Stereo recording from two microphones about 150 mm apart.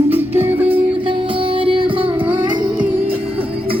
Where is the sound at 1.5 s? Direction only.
35° right (ahead or behind).